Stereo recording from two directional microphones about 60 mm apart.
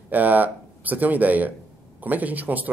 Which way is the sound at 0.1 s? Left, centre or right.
Right.